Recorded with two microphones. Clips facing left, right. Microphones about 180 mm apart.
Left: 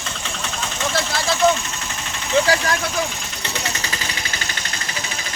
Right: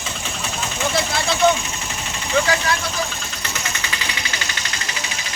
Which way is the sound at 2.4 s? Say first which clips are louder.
Left 1 dB; 35° left (ahead or behind).